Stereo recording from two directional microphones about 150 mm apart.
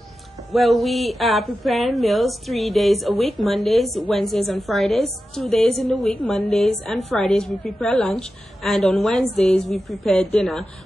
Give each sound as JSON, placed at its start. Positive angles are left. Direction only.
{"t": 0.5, "sound": "a woman's voice", "side_deg": 0}